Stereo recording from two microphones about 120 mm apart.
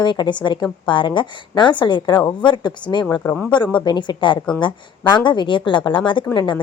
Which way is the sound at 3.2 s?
15° left (ahead or behind).